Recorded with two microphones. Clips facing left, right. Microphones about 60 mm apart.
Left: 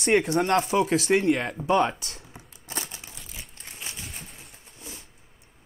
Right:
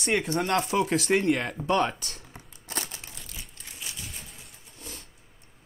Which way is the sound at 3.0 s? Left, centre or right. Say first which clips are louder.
Even; centre.